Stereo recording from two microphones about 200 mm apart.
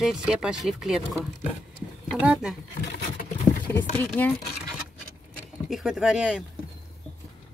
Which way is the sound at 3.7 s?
5° left (ahead or behind).